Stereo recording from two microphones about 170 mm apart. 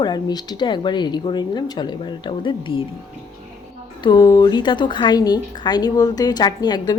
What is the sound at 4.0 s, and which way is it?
A woman's voice, 25° left (ahead or behind).